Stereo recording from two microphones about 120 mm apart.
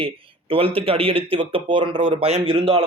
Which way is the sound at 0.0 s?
50° right (ahead or behind).